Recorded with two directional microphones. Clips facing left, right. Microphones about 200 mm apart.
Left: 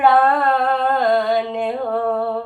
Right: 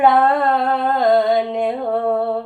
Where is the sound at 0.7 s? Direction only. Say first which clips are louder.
Right 2 dB; 20° right (ahead or behind).